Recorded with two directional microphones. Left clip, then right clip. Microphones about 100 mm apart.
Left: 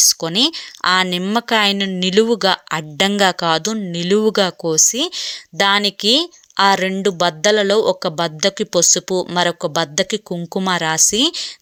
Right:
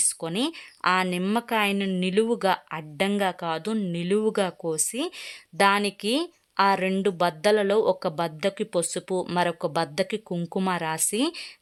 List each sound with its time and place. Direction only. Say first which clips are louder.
0.1 s speech: left 12 dB; 40° left (ahead or behind)
2.0 s speech: left 9 dB; 45° left (ahead or behind)